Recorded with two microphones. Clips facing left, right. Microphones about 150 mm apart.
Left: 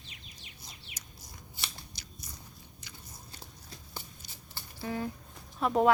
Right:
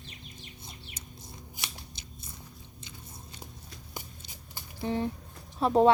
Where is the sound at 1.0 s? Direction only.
25° right (ahead or behind).